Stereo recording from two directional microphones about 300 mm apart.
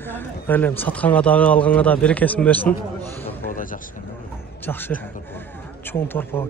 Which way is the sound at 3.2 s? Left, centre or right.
Left.